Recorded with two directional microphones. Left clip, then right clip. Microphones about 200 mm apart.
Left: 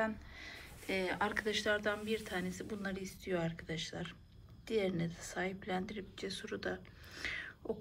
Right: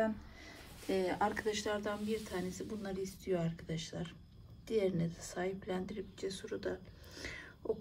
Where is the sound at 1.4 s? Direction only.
15° right (ahead or behind).